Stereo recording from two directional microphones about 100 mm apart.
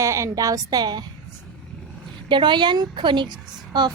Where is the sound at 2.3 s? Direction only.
50° right (ahead or behind).